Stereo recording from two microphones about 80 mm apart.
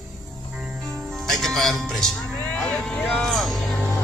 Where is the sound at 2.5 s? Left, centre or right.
Centre.